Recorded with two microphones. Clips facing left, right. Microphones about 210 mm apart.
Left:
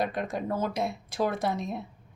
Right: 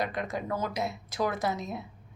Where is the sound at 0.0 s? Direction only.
60° left (ahead or behind).